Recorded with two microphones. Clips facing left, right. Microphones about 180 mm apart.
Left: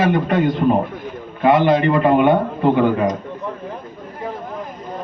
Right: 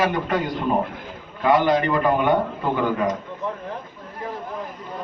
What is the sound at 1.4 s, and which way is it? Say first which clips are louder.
Speech: left 4 dB; 25° left (ahead or behind).